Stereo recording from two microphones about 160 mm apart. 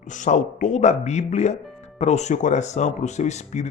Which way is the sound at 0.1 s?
50° left (ahead or behind).